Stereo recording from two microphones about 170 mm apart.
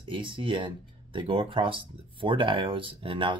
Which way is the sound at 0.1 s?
30° right (ahead or behind).